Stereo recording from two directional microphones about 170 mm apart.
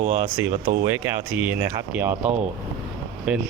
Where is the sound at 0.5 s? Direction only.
60° right (ahead or behind).